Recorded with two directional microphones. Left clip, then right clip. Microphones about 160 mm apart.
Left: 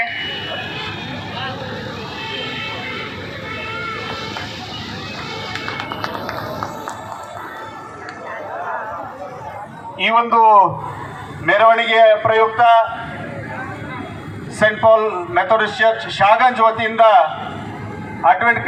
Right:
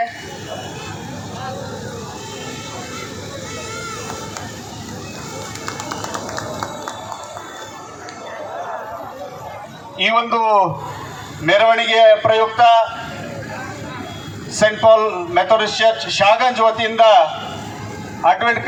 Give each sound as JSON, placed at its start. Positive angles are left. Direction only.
{"t": 10.0, "sound": "a man's voice", "side_deg": -20}
{"t": 14.6, "sound": "a man's voice", "side_deg": -15}